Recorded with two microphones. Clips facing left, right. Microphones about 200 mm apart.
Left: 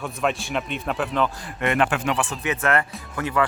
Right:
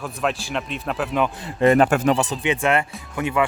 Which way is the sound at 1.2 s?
25° right (ahead or behind).